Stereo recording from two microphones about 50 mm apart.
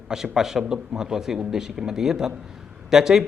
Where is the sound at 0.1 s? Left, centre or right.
Centre.